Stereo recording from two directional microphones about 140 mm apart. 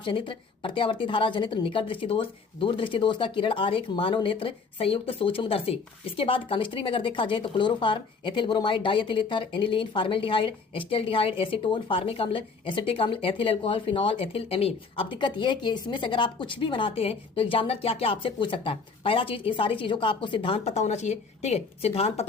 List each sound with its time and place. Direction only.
0.0 s a woman's voice: 35° left (ahead or behind)